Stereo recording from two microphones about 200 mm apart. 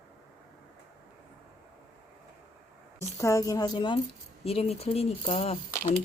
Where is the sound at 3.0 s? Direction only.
15° left (ahead or behind).